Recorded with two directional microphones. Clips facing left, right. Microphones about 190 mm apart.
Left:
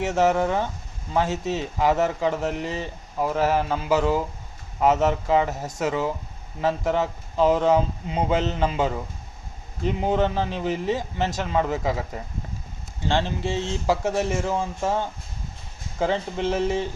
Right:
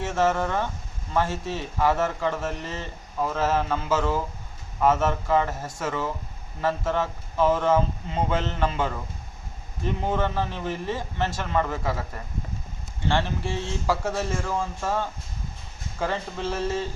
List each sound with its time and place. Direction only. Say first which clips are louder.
0.0 s speech: left 3 dB; 15° left (ahead or behind)